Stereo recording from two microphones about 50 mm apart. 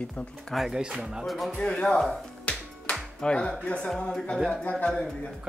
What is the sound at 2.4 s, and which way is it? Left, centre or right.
Music, left.